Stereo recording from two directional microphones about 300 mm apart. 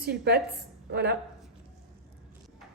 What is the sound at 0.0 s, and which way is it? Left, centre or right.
Speech, right.